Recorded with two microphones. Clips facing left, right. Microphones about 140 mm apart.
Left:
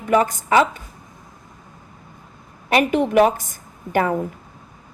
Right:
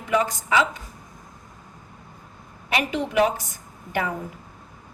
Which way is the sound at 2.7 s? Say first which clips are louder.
Left 7 dB; 50° left (ahead or behind).